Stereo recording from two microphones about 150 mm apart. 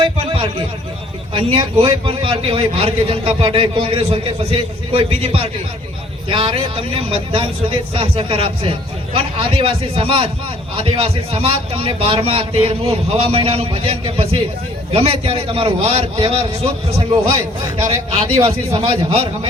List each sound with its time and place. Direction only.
0.0 s a sound: 35° right (ahead or behind)
1.3 s a man's voice: 35° right (ahead or behind)
18.1 s a man's voice: 40° right (ahead or behind)